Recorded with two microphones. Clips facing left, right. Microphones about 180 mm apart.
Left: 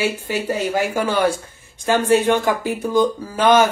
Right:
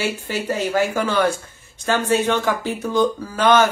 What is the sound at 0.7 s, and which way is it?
A man's voice, 15° left (ahead or behind).